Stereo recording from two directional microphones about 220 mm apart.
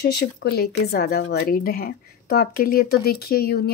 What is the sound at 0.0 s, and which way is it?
Speech, 45° left (ahead or behind).